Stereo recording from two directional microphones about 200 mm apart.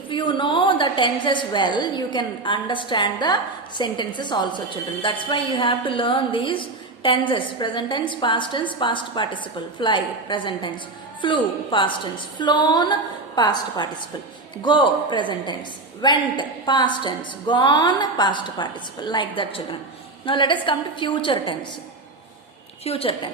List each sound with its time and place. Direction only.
0.1 s a woman's voice: 25° left (ahead or behind)
22.8 s a woman's voice: 30° left (ahead or behind)